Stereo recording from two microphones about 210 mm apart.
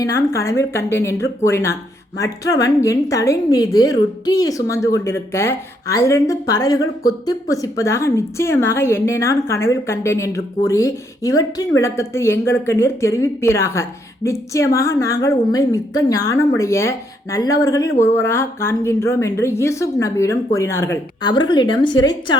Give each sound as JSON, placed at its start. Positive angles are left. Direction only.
{"t": 0.0, "sound": "a woman's voice", "side_deg": 15}